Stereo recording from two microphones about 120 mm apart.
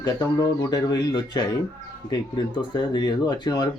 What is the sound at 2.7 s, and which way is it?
Speech, 35° left (ahead or behind).